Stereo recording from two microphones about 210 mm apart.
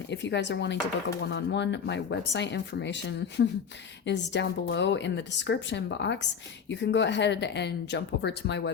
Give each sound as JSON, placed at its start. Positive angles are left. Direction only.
{"t": 0.1, "sound": "speech", "side_deg": 55}